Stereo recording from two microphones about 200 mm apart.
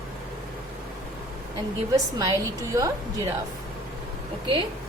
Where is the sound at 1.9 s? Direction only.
15° right (ahead or behind).